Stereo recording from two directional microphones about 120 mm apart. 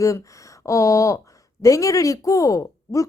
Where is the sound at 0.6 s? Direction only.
25° left (ahead or behind).